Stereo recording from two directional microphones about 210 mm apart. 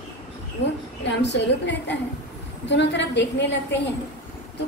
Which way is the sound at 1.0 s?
55° left (ahead or behind).